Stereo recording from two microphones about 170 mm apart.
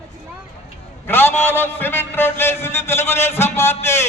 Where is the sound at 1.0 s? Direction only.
10° left (ahead or behind).